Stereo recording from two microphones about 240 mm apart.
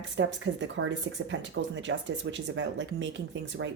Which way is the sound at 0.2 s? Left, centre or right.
Right.